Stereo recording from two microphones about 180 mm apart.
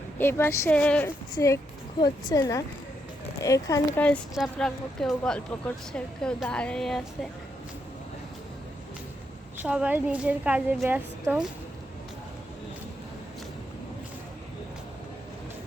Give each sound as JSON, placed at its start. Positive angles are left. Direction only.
{"t": 0.2, "sound": "speech", "side_deg": 10}
{"t": 2.0, "sound": "a woman's voice", "side_deg": 25}
{"t": 4.0, "sound": "speech", "side_deg": 5}
{"t": 9.6, "sound": "a woman's voice", "side_deg": -5}